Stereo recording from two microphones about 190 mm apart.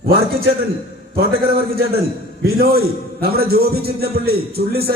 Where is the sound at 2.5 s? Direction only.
55° right (ahead or behind).